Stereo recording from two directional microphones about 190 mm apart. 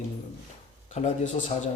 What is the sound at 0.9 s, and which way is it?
Speech, 40° left (ahead or behind).